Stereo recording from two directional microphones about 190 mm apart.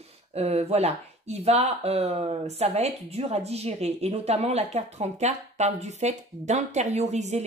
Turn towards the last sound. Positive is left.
turn(degrees=-35)  # may be behind; listen again after turning